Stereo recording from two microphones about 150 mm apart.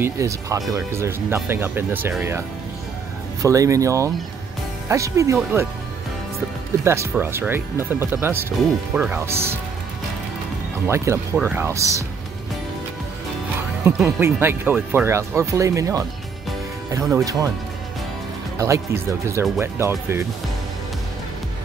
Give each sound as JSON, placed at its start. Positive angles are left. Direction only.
{"t": 0.0, "sound": "speech", "side_deg": -20}
{"t": 3.4, "sound": "speech", "side_deg": -20}
{"t": 6.8, "sound": "speech", "side_deg": -15}
{"t": 11.3, "sound": "speech", "side_deg": -10}
{"t": 13.8, "sound": "speech", "side_deg": -15}
{"t": 18.6, "sound": "speech", "side_deg": -20}